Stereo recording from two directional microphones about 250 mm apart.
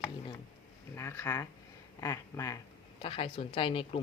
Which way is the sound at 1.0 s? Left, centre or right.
Centre.